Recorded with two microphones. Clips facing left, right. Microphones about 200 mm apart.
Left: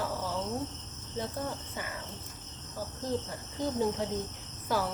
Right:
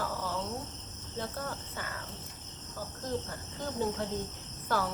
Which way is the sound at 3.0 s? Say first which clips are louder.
Left 2 dB; 10° left (ahead or behind).